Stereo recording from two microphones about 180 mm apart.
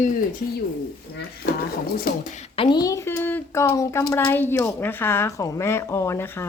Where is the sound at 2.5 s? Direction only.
25° left (ahead or behind).